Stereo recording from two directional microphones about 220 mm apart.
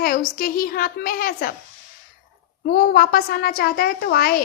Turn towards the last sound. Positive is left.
turn(degrees=45)  # may be behind; listen again after turning